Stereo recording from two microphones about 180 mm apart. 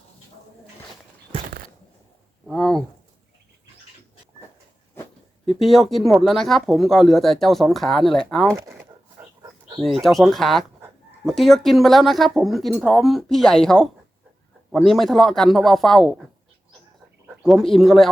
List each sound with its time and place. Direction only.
2.5 s a sound: 5° left (ahead or behind)
5.5 s speech: centre (ahead or behind)
8.4 s speech: 15° right (ahead or behind)
9.4 s dog: 20° right (ahead or behind)
9.8 s speech: centre (ahead or behind)
17.2 s speech: centre (ahead or behind)